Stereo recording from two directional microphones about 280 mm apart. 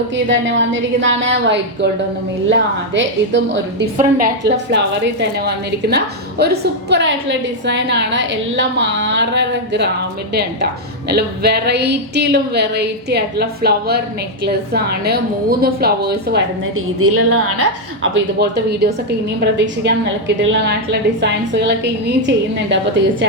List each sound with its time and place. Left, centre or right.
0.3 s a woman's voice: right
16.7 s a woman's voice: right